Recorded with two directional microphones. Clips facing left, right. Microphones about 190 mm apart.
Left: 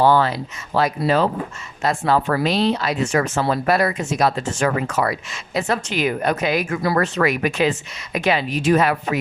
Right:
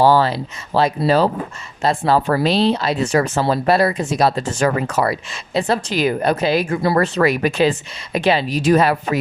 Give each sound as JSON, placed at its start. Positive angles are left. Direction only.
{"t": 0.0, "sound": "speech", "side_deg": -30}